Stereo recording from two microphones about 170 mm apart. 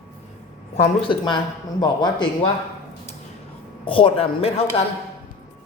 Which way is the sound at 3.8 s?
30° left (ahead or behind).